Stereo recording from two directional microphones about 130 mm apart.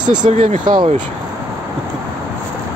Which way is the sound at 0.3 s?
55° right (ahead or behind).